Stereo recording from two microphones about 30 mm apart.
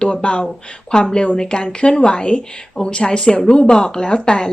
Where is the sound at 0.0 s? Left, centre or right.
Left.